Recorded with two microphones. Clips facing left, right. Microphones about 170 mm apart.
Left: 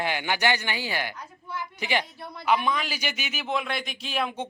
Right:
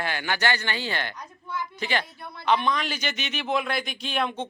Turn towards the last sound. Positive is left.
turn(degrees=10)  # may be behind; listen again after turning